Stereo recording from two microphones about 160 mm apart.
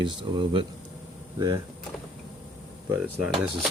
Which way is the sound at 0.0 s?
30° right (ahead or behind).